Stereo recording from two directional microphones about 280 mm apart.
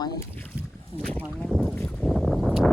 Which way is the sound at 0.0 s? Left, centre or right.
Centre.